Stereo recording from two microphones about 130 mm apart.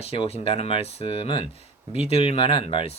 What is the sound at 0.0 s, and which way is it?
Speech, 50° left (ahead or behind).